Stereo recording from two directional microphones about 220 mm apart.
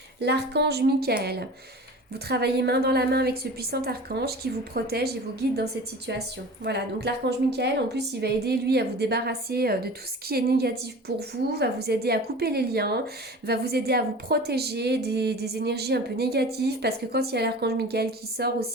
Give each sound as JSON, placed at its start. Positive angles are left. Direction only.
{"t": 0.2, "sound": "a woman's voice", "side_deg": -50}